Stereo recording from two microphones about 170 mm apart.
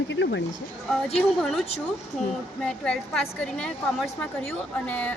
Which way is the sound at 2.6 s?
5° left (ahead or behind).